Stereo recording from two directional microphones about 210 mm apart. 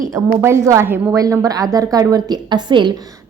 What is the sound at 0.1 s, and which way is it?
A woman's voice, 15° right (ahead or behind).